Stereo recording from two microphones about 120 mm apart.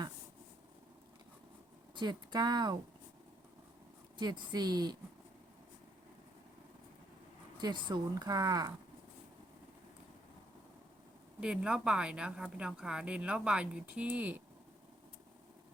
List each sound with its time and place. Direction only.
2.0 s speech: 35° right (ahead or behind)
4.2 s speech: 35° right (ahead or behind)
7.6 s speech: 35° right (ahead or behind)
11.3 s a woman's voice: 10° right (ahead or behind)